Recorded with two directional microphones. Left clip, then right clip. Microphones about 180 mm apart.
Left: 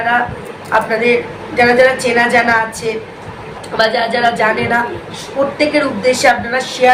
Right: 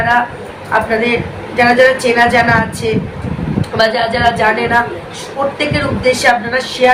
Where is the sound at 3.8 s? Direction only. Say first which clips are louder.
Even; 10° left (ahead or behind).